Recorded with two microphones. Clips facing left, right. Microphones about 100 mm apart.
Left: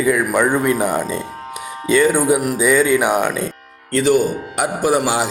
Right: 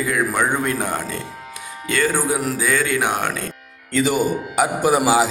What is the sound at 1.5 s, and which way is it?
Music, 20° left (ahead or behind).